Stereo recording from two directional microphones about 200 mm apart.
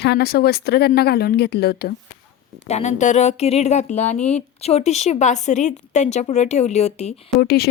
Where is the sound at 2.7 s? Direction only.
35° left (ahead or behind).